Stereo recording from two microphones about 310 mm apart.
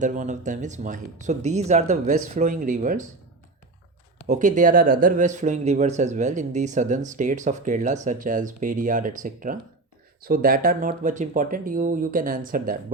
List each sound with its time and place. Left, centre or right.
0.0 s speech: right
4.3 s speech: right